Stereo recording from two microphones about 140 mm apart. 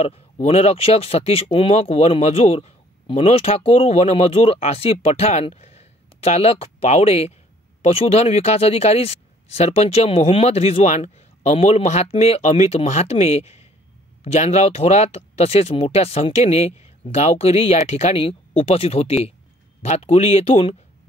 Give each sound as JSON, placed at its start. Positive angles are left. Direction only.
{"t": 0.0, "sound": "speech", "side_deg": 50}